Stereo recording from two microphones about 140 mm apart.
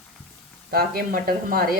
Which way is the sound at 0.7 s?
90° right.